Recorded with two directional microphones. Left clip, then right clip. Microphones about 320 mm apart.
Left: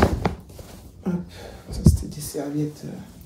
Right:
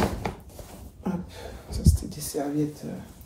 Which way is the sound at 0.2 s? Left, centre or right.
Left.